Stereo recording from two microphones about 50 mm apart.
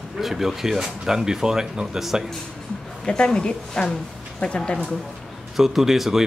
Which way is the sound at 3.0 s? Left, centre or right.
Left.